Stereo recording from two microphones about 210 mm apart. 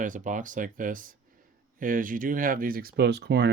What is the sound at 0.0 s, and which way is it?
Speech, 40° right (ahead or behind).